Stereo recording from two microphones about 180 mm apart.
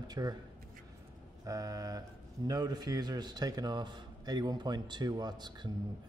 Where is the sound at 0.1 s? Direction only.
20° right (ahead or behind).